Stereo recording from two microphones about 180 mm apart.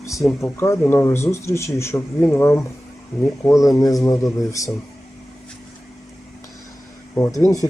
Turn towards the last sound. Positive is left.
turn(degrees=20)  # may be behind; listen again after turning